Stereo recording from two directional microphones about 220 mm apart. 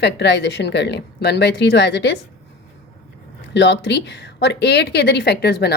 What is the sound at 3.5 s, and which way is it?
A woman's voice, 55° left (ahead or behind).